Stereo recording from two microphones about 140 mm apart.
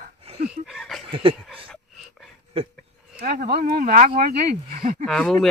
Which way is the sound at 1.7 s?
Centre (ahead or behind).